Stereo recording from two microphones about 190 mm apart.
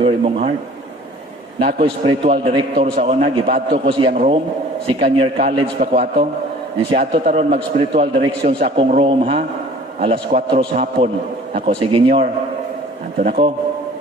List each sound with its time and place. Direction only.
0.0 s a man's voice: 30° right (ahead or behind)
1.6 s a man's voice: 30° right (ahead or behind)